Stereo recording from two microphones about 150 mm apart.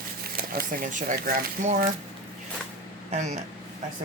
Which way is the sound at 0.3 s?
85° right.